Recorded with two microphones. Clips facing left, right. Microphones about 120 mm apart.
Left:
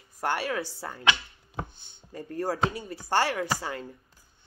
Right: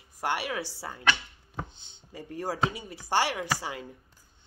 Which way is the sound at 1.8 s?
20° right (ahead or behind).